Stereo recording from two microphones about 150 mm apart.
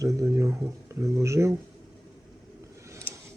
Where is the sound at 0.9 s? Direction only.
20° right (ahead or behind).